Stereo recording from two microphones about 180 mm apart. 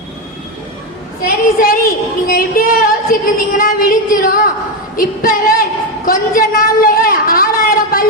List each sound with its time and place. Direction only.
1.6 s a woman's voice: 55° left (ahead or behind)
4.9 s singing: 50° left (ahead or behind)
6.1 s a woman's voice: 55° left (ahead or behind)